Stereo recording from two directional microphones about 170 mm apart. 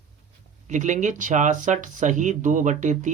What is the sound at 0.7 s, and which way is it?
Speech, 45° right (ahead or behind).